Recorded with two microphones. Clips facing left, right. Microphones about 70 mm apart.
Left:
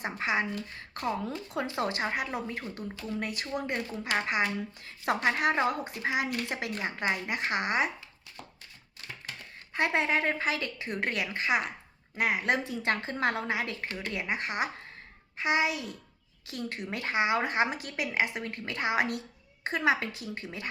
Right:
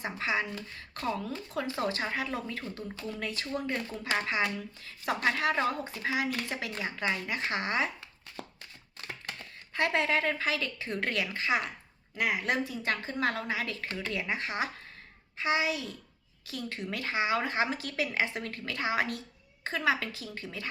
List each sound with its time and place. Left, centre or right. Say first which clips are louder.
0.0 s speech: left 2 dB; left
1.5 s speech: left 1 dB; left
4.8 s speech: left 1 dB; left
9.2 s a sound: even; centre
9.7 s speech: left 1 dB; centre
14.1 s speech: left 1 dB; centre